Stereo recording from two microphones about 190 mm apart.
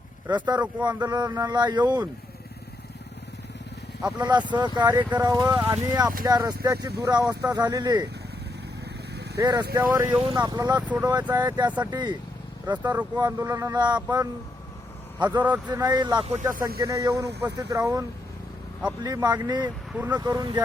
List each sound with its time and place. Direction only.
0.3 s speech: 20° right (ahead or behind)
4.0 s speech: 20° right (ahead or behind)
9.3 s speech: 20° right (ahead or behind)
10.8 s speech: 10° right (ahead or behind)
11.0 s speech: 20° right (ahead or behind)
15.4 s speech: 10° right (ahead or behind)
15.7 s speech: 20° right (ahead or behind)
19.0 s speech: 20° right (ahead or behind)
19.9 s speech: 10° right (ahead or behind)
20.1 s speech: 20° right (ahead or behind)